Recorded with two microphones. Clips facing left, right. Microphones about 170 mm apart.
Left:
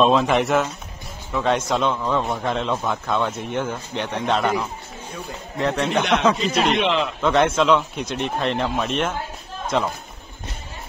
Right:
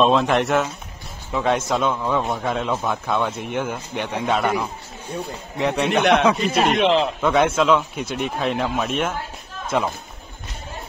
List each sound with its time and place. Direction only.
0.0 s speech: centre (ahead or behind)
5.9 s speech: 60° right (ahead or behind)
7.2 s speech: 5° right (ahead or behind)